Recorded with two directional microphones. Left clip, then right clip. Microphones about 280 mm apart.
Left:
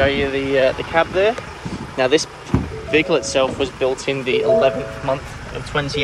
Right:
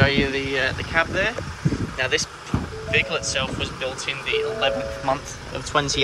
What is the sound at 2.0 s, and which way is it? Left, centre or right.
Speech, centre.